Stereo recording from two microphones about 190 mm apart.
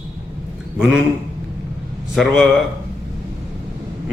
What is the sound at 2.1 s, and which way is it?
Speech, centre (ahead or behind).